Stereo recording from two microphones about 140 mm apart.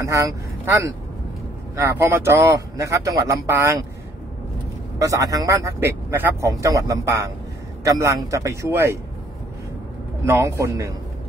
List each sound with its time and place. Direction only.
0.0 s speech: 25° right (ahead or behind)
5.0 s speech: 25° right (ahead or behind)
10.2 s speech: 20° right (ahead or behind)